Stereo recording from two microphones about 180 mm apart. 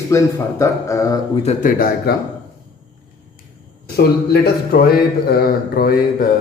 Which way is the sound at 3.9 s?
60° left (ahead or behind).